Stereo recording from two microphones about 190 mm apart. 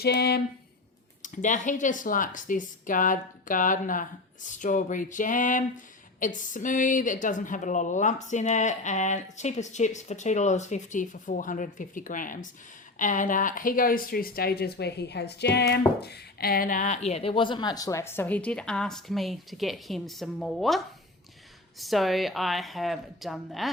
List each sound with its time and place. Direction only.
0.0 s speech: 55° left (ahead or behind)
1.2 s speech: 40° left (ahead or behind); by 23.6 s centre (ahead or behind)